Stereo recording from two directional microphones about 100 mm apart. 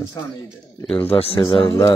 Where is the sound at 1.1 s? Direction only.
65° left (ahead or behind).